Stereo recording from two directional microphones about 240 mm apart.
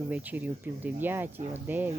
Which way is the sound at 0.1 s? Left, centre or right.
Centre.